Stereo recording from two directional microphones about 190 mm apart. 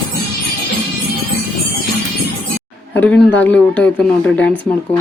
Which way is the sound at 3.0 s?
10° left (ahead or behind).